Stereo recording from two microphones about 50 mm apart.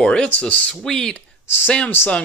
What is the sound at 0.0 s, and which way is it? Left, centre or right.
Speech, left.